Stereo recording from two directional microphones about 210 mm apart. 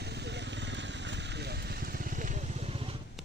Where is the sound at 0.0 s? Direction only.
55° right (ahead or behind); by 2.9 s 30° right (ahead or behind).